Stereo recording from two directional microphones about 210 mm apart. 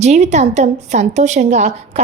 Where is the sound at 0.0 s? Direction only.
30° right (ahead or behind).